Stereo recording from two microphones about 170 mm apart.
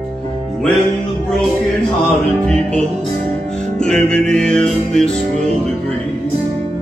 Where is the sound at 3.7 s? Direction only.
5° left (ahead or behind).